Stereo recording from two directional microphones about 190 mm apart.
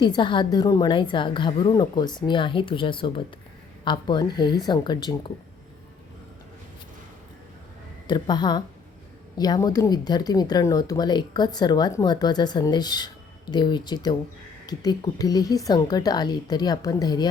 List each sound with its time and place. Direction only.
0.0 s speech: 25° left (ahead or behind)
8.0 s speech: 25° left (ahead or behind)